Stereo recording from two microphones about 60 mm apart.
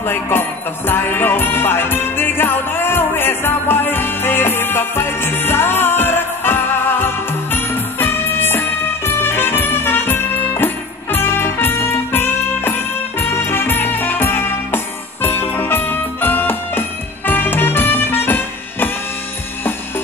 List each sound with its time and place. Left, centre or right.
0.1 s music: left